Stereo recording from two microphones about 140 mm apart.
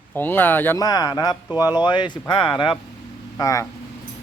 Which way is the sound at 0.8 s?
30° left (ahead or behind).